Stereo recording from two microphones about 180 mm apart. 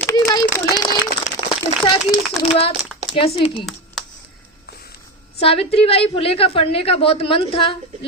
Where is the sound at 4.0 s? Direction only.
Centre (ahead or behind).